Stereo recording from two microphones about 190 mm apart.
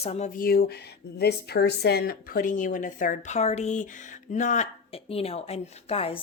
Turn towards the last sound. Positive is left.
turn(degrees=30)  # may be behind; listen again after turning